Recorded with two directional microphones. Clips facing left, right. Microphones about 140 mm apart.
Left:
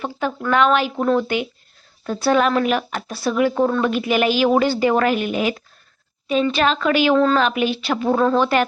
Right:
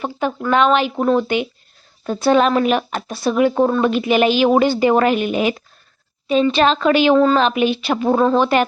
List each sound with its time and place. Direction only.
0.0 s speech: 20° right (ahead or behind)
7.2 s a woman's voice: 15° right (ahead or behind)